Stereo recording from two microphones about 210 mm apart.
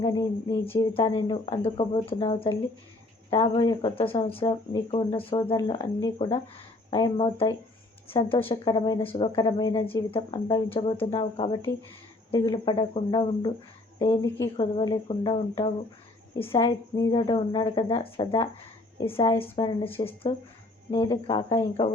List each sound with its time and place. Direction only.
0.0 s speech: 20° left (ahead or behind)